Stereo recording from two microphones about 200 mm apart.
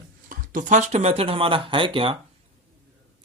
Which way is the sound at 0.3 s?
40° right (ahead or behind).